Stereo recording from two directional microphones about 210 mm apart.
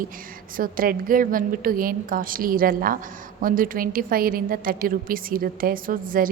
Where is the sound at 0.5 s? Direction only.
40° right (ahead or behind).